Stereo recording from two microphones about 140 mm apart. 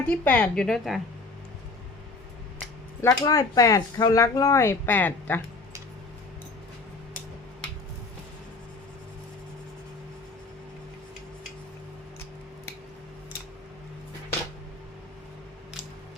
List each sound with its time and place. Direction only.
0.0 s a woman's voice: 10° left (ahead or behind)
3.0 s speech: 25° left (ahead or behind)